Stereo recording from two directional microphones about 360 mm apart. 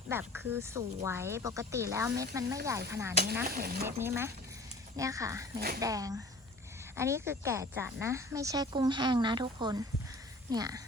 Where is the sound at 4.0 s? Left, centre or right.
Centre.